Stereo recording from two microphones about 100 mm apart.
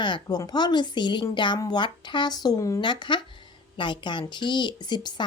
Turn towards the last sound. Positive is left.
turn(degrees=45)  # may be behind; listen again after turning